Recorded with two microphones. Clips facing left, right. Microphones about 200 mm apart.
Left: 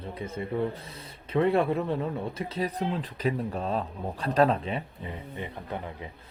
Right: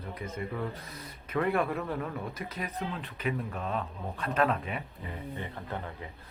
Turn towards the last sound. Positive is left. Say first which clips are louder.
# left 2 dB
turn(degrees=15)  # may be behind; listen again after turning